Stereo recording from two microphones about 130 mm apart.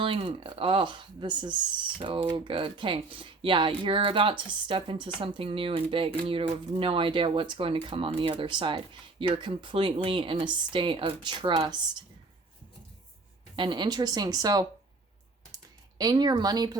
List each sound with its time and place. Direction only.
0.0 s speech: 40° right (ahead or behind)
13.6 s speech: 35° right (ahead or behind)
16.0 s speech: 30° right (ahead or behind)